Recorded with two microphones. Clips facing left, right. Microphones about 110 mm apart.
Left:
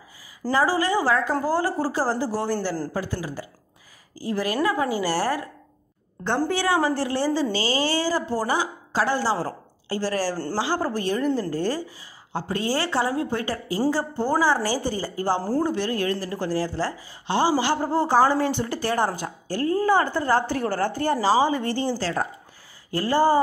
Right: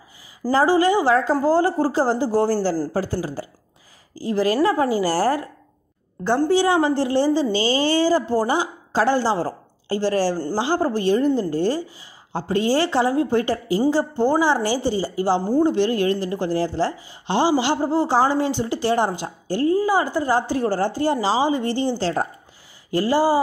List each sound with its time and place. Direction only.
0.4 s a woman's voice: 30° right (ahead or behind)
6.5 s a woman's voice: 25° right (ahead or behind)
19.8 s a woman's voice: 15° right (ahead or behind)